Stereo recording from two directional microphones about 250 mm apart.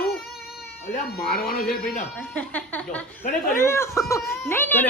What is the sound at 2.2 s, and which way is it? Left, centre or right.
Music, centre.